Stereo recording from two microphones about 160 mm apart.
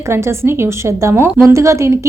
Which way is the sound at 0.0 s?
15° right (ahead or behind).